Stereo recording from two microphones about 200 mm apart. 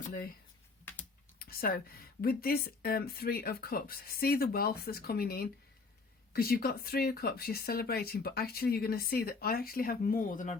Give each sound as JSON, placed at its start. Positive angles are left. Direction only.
{"t": 0.1, "sound": "speech", "side_deg": 50}
{"t": 1.4, "sound": "speech", "side_deg": 50}